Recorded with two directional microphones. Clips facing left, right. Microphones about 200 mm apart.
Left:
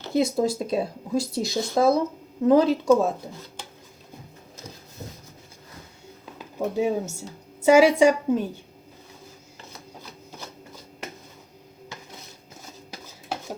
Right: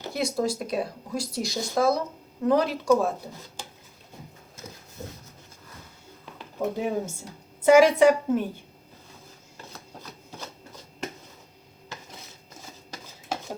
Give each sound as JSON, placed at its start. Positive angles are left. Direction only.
{"t": 0.1, "sound": "speech", "side_deg": 25}
{"t": 6.4, "sound": "speech", "side_deg": 10}